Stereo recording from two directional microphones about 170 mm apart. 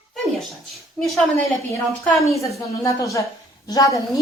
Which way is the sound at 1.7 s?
15° left (ahead or behind).